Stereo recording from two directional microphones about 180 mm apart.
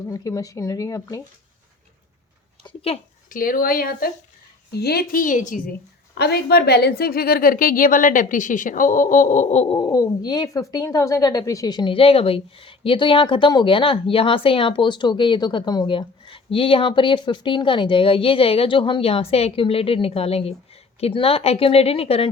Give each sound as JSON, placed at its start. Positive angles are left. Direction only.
{"t": 0.1, "sound": "speech", "side_deg": 20}
{"t": 2.6, "sound": "speech", "side_deg": 35}
{"t": 3.2, "sound": "a woman's voice", "side_deg": 50}
{"t": 6.1, "sound": "a woman's voice", "side_deg": 65}
{"t": 9.7, "sound": "speech", "side_deg": 20}